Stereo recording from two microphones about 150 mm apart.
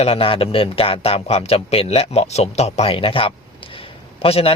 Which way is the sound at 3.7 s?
40° left (ahead or behind).